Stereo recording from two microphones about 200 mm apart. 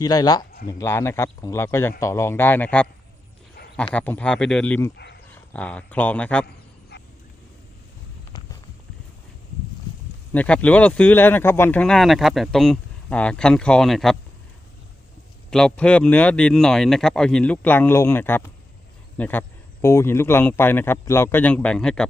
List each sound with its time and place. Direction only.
0.0 s a man's voice: 20° left (ahead or behind)
3.9 s a man's voice: 5° left (ahead or behind)
6.9 s vehicle: 55° left (ahead or behind)
10.3 s speech: 5° left (ahead or behind)
15.4 s a man's voice: 5° left (ahead or behind)